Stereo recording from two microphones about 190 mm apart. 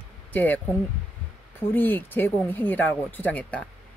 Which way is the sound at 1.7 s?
10° left (ahead or behind).